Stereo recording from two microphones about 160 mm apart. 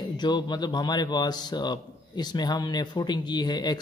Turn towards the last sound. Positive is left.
turn(degrees=25)  # may be behind; listen again after turning